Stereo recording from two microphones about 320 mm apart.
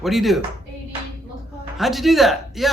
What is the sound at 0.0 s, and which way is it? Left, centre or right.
Speech, centre.